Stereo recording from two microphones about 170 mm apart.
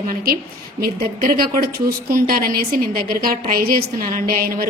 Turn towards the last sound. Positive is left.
turn(degrees=-55)  # may be behind; listen again after turning